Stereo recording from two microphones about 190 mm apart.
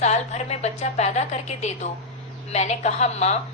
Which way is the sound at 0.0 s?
35° left (ahead or behind).